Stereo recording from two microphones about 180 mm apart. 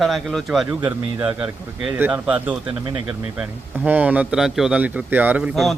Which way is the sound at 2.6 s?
25° right (ahead or behind).